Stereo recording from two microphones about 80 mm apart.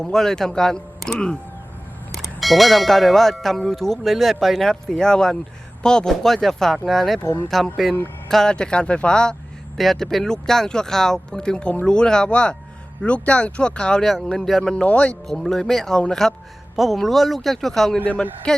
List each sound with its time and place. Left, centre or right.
0.0 s speech: centre
14.8 s speech: centre
15.3 s speech: centre
18.0 s speech: centre